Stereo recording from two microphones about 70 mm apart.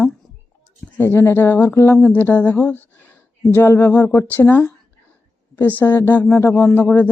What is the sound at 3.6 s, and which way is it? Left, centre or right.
Speech, left.